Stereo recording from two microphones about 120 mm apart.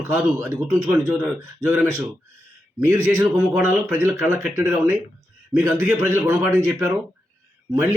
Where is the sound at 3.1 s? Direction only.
20° right (ahead or behind).